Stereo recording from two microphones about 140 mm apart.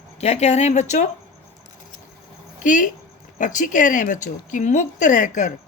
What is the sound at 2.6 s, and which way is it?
A woman's voice, 65° left (ahead or behind).